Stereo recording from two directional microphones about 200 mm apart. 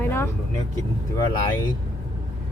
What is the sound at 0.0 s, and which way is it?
Vehicle, 10° left (ahead or behind).